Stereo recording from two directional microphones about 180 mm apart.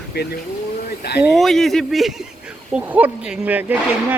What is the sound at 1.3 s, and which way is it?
Speech, centre (ahead or behind).